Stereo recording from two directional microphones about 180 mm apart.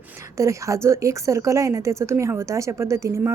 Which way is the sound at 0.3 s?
15° right (ahead or behind).